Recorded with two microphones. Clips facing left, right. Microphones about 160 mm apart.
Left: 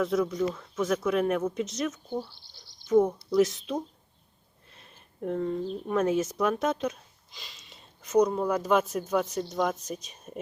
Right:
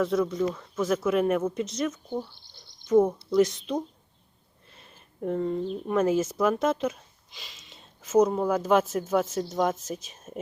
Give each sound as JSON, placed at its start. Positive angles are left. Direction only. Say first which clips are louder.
{"t": 0.0, "sound": "speech", "louder": "right 1 dB", "side_deg": 0}
{"t": 4.7, "sound": "a sound", "louder": "right 1 dB", "side_deg": 0}
{"t": 5.9, "sound": "speech", "louder": "right 2 dB", "side_deg": 0}